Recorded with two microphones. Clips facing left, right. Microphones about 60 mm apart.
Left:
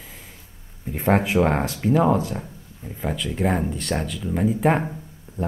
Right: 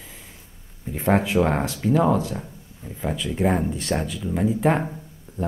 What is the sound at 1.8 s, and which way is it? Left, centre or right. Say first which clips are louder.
Speech: left 1 dB; left.